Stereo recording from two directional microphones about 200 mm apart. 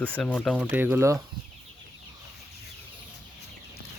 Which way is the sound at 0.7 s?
10° right (ahead or behind).